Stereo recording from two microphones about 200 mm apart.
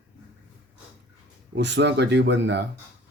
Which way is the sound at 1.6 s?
60° right (ahead or behind).